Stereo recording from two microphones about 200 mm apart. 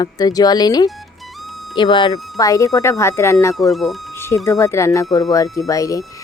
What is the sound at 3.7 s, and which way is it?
Speech, centre (ahead or behind).